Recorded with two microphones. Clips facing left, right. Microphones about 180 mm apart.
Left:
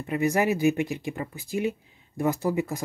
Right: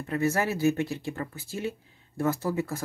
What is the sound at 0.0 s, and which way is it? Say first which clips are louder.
Speech: left 3 dB; 15° left (ahead or behind).